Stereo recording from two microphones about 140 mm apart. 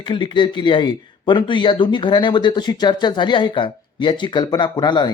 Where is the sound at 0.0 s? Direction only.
35° left (ahead or behind).